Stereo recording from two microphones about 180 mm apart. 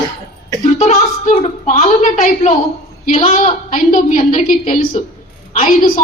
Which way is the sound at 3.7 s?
45° left (ahead or behind).